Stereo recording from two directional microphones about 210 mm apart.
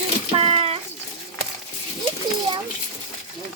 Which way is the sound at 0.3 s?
30° right (ahead or behind).